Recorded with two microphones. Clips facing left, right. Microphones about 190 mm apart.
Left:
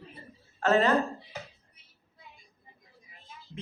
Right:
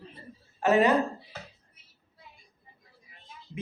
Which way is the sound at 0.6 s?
15° right (ahead or behind).